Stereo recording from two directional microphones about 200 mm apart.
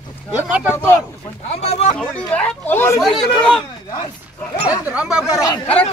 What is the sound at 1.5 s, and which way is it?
Speech, 35° left (ahead or behind).